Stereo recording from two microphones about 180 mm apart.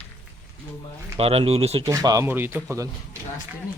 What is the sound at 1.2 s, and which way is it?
Speech, 35° right (ahead or behind).